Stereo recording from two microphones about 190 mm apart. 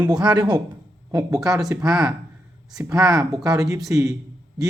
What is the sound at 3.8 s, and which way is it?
Speech, 15° right (ahead or behind).